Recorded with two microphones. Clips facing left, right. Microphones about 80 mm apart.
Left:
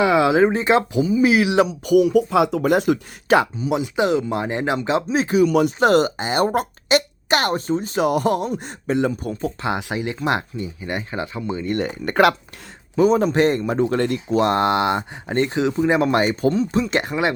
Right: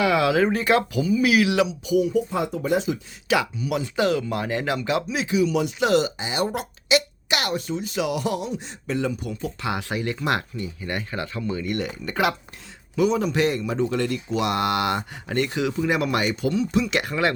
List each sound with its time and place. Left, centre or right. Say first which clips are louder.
0.0 s speech: left 4 dB; left
1.6 s speech: left 6 dB; left
3.2 s speech: left 6 dB; left
8.9 s speech: left 5 dB; left
12.0 s speech: left 8 dB; left
13.0 s speech: left 5 dB; left